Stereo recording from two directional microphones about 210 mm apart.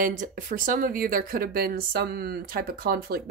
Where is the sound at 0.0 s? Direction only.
40° right (ahead or behind).